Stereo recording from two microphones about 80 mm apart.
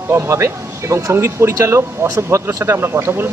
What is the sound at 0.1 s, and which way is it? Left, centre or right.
Speech, right.